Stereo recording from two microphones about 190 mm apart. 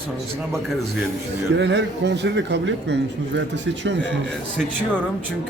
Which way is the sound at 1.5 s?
65° right (ahead or behind).